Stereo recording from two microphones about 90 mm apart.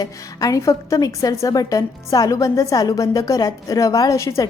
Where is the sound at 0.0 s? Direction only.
40° left (ahead or behind).